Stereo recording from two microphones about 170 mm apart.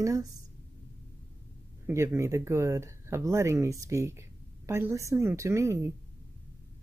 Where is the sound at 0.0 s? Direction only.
20° right (ahead or behind).